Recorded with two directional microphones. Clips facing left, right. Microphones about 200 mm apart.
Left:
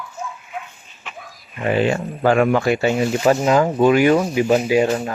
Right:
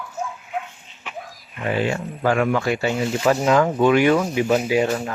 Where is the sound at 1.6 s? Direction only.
20° left (ahead or behind).